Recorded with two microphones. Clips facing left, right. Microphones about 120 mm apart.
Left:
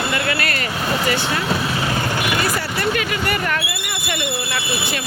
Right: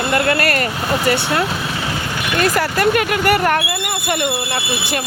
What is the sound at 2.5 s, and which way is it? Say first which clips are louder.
Speech: right 6 dB; 45° right (ahead or behind).